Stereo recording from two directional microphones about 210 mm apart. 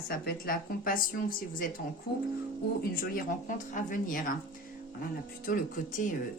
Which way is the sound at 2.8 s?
45° left (ahead or behind).